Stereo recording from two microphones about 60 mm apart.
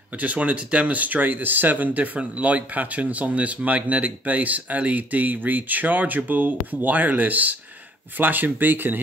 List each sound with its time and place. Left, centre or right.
0.2 s speech: right